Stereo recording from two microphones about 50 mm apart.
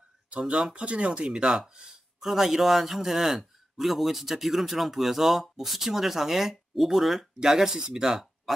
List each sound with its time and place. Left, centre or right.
0.3 s speech: centre
1.7 s a sound: centre
2.2 s a man's voice: centre